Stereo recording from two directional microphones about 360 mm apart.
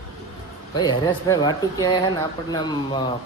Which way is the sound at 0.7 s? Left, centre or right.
Centre.